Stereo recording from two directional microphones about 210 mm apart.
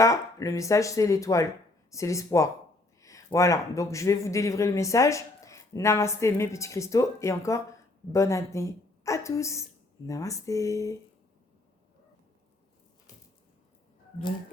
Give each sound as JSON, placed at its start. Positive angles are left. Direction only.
{"t": 0.0, "sound": "a woman's voice", "side_deg": 15}